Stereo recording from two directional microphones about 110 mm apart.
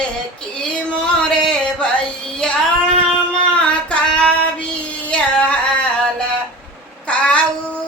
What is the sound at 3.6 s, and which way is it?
Child singing, 10° left (ahead or behind).